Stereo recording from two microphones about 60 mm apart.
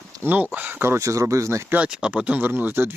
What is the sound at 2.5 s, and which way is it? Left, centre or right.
Speech, right.